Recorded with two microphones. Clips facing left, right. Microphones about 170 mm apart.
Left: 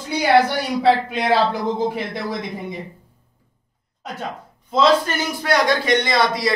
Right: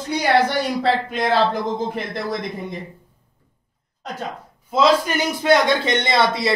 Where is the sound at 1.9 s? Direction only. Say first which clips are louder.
Even; 5° left (ahead or behind).